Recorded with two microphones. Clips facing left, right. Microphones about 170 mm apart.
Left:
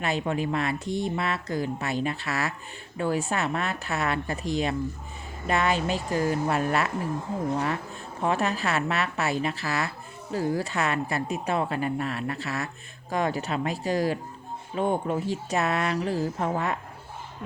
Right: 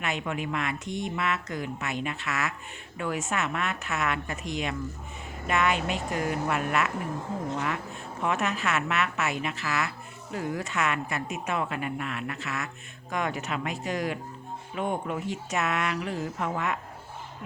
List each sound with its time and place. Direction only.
0.0 s speech: 35° left (ahead or behind)
8.2 s speech: 35° left (ahead or behind)